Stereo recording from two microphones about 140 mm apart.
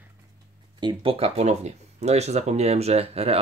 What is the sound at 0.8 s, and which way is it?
Speech, 35° right (ahead or behind).